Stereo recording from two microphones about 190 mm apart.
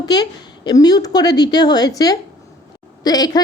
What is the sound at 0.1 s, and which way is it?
Female singing, 20° left (ahead or behind).